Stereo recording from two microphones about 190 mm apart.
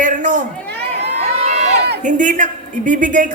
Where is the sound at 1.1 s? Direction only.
35° right (ahead or behind).